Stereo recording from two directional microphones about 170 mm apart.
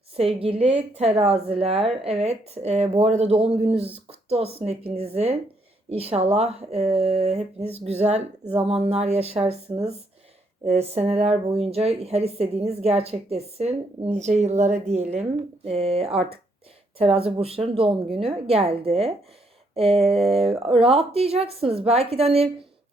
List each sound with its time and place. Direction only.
0.2 s a woman's voice: 35° right (ahead or behind)